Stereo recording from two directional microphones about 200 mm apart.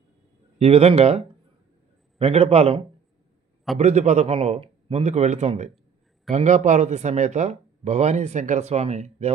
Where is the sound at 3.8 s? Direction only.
35° right (ahead or behind).